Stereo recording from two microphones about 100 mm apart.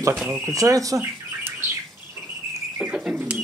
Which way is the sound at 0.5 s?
35° right (ahead or behind).